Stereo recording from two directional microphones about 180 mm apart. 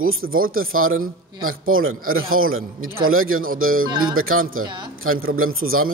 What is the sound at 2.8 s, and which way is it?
Speech, 55° right (ahead or behind).